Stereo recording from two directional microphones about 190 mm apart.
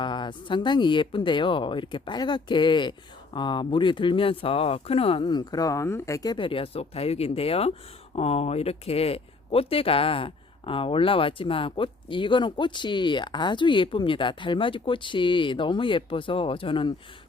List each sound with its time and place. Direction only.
0.0 s speech: 25° left (ahead or behind)